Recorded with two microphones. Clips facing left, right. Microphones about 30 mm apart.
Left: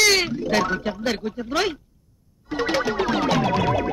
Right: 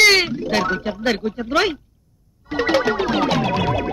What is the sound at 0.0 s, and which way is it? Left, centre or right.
Speech, right.